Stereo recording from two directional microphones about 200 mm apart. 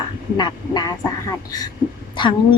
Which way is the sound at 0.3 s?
20° left (ahead or behind).